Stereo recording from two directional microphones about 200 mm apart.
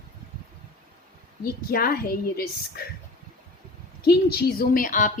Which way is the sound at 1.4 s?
50° left (ahead or behind).